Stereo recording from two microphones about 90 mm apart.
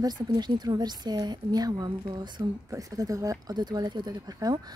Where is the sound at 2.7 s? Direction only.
40° right (ahead or behind).